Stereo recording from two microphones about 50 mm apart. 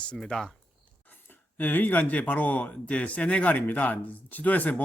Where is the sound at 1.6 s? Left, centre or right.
Left.